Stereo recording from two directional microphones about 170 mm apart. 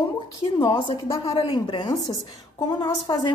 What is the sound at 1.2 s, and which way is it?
A woman's voice, 35° left (ahead or behind).